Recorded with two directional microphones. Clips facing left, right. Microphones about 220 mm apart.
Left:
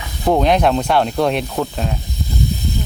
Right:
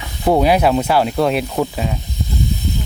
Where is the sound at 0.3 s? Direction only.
10° right (ahead or behind).